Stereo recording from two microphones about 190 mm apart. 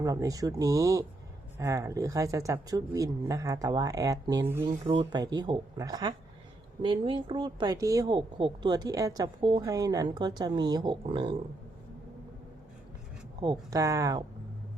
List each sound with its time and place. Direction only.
0.0 s speech: 20° right (ahead or behind)
13.4 s speech: 20° right (ahead or behind)